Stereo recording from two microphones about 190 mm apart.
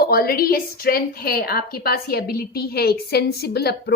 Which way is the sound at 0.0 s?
55° left (ahead or behind).